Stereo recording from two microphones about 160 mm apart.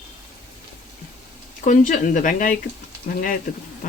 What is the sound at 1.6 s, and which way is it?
Speech, 50° left (ahead or behind).